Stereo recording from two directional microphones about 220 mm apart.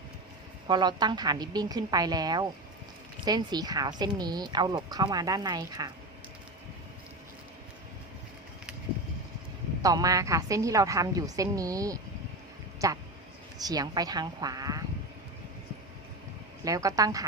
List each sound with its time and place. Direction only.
0.7 s a woman's voice: 20° right (ahead or behind)
9.8 s a woman's voice: 15° right (ahead or behind)
16.6 s a woman's voice: 15° right (ahead or behind)